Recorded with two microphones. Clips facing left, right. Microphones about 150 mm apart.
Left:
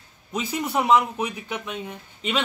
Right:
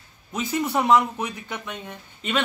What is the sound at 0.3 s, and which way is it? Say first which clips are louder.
Speech: right 2 dB; 10° left (ahead or behind).